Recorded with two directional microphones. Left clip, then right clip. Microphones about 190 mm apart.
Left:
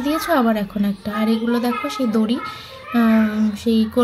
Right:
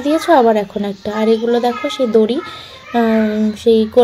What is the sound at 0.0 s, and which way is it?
A woman's voice, 15° right (ahead or behind).